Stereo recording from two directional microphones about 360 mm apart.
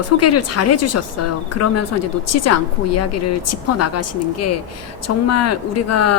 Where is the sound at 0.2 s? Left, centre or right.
Left.